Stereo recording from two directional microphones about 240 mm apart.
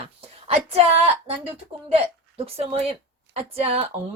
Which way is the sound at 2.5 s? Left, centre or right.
Right.